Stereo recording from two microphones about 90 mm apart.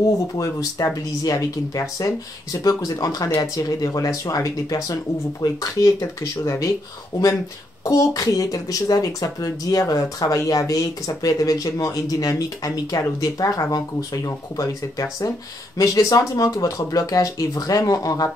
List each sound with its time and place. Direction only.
0.4 s speech: 40° left (ahead or behind)
7.8 s speech: 40° left (ahead or behind)